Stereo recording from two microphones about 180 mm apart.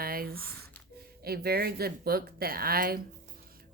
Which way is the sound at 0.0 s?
55° right (ahead or behind).